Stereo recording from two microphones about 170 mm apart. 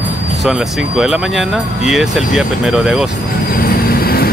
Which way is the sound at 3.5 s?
60° left (ahead or behind).